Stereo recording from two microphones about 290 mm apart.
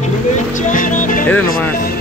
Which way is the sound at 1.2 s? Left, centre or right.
Centre.